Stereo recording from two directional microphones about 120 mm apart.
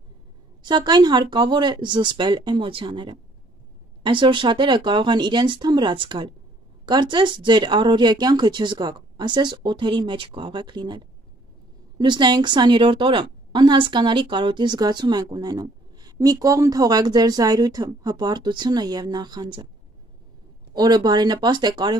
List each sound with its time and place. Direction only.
0.6 s a woman's voice: 40° right (ahead or behind)
20.7 s a woman's voice: 35° right (ahead or behind)